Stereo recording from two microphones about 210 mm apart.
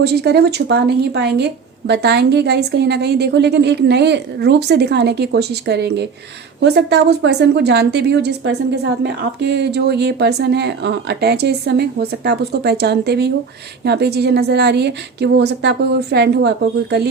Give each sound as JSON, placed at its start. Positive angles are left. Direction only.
{"t": 0.0, "sound": "a woman's voice", "side_deg": -50}